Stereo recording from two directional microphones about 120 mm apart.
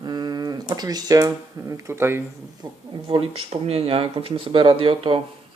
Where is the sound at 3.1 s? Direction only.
50° right (ahead or behind).